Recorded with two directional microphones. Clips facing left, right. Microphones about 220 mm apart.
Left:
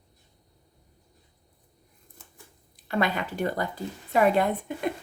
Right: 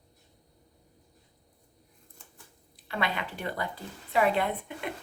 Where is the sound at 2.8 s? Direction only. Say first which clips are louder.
Left 6 dB; 45° left (ahead or behind).